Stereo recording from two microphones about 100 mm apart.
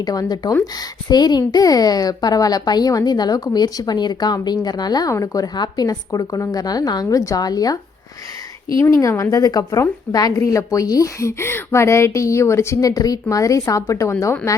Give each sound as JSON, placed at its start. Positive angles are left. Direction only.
{"t": 0.0, "sound": "speech", "side_deg": 40}
{"t": 8.8, "sound": "speech", "side_deg": 30}